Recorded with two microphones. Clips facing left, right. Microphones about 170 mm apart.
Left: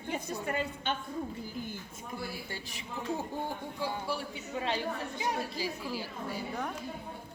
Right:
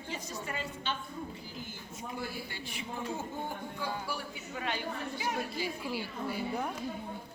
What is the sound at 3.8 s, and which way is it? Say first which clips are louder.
Speech: left 3 dB; 30° left (ahead or behind).